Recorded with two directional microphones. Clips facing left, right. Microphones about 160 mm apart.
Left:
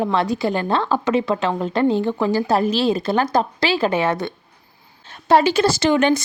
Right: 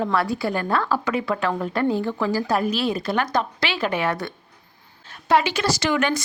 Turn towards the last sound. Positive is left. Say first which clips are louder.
# left 6 dB
turn(degrees=25)  # may be behind; listen again after turning